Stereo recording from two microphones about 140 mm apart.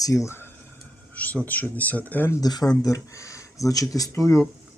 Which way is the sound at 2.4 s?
25° left (ahead or behind).